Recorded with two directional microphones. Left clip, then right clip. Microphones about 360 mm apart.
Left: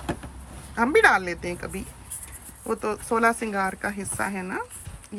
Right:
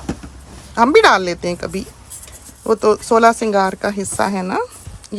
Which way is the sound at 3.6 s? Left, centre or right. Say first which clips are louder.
Right 9 dB; right.